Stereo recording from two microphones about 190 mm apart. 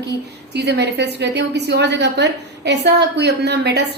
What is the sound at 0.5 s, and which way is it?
A woman's voice, 60° right (ahead or behind).